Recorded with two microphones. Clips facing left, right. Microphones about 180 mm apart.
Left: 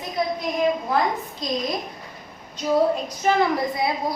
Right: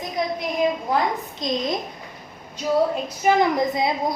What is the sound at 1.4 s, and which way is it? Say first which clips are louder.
Speech: right 2 dB; 25° right (ahead or behind).